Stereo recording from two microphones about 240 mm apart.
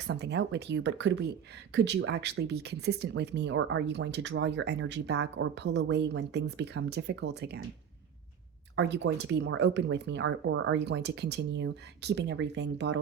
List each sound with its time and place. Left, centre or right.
0.1 s speech: right
8.7 s speech: right